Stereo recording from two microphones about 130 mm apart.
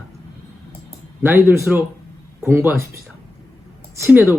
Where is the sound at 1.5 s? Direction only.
15° right (ahead or behind).